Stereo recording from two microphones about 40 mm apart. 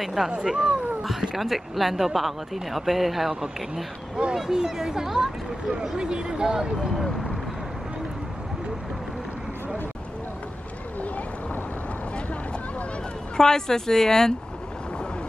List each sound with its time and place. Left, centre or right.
0.0 s speech: centre
0.3 s speech: centre
1.3 s speech: centre
13.4 s speech: centre